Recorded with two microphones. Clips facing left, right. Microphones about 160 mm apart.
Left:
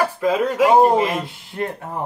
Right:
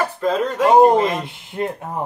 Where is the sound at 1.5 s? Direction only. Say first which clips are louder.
Right 2 dB; 25° right (ahead or behind).